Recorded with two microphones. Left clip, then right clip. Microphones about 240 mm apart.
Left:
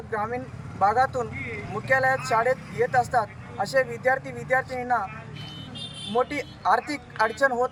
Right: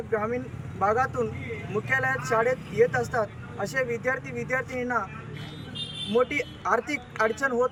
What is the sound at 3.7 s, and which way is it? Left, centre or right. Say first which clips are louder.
Speech: left 4 dB; centre.